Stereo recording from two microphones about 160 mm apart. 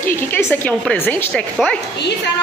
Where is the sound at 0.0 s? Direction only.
15° left (ahead or behind).